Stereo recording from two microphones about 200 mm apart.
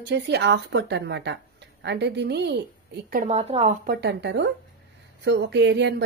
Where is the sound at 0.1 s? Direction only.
60° right (ahead or behind).